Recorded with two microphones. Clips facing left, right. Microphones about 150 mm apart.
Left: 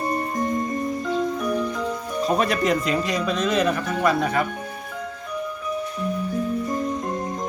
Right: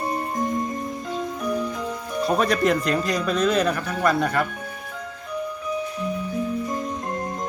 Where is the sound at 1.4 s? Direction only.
55° left (ahead or behind).